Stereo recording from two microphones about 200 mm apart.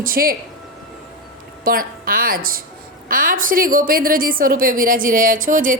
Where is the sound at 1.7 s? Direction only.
45° right (ahead or behind).